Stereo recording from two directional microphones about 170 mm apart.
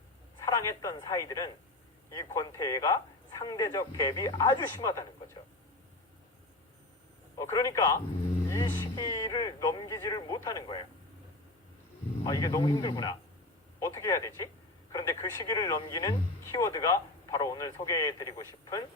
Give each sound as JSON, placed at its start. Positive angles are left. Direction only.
{"t": 0.3, "sound": "speech", "side_deg": 20}
{"t": 7.5, "sound": "speech", "side_deg": 20}
{"t": 8.4, "sound": "a sound", "side_deg": 20}
{"t": 12.2, "sound": "speech", "side_deg": 20}